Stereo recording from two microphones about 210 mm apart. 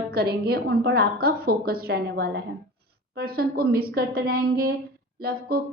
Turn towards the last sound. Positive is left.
turn(degrees=-45)  # may be behind; listen again after turning